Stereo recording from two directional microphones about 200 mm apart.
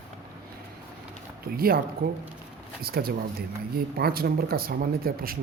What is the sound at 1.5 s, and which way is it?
Speech, 50° right (ahead or behind).